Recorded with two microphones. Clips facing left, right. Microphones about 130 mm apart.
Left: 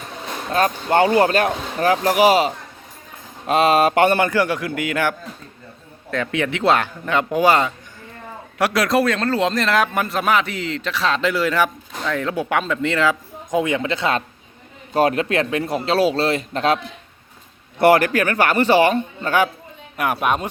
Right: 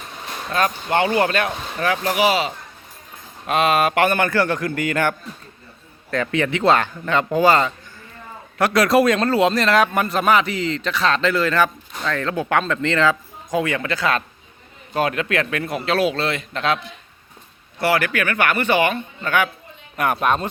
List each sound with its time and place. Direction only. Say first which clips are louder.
0.5 s speech: left 3 dB; 40° left (ahead or behind)
3.4 s speech: left 3 dB; 30° left (ahead or behind)
4.3 s a man's voice: even; 10° left (ahead or behind)
9.0 s a man's voice: right 3 dB; 15° right (ahead or behind); by 13.1 s 10° left (ahead or behind)
13.5 s speech: left 2 dB; 20° left (ahead or behind); by 16.8 s 40° left (ahead or behind)
17.7 s speech: left 6 dB; 50° left (ahead or behind); by 19.5 s 35° left (ahead or behind)
20.0 s a man's voice: right 1 dB; 10° left (ahead or behind)